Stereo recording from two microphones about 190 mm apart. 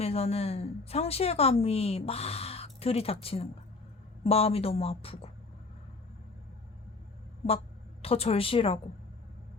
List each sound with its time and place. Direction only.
0.0 s a woman's voice: 30° left (ahead or behind)
8.0 s a woman's voice: 30° left (ahead or behind)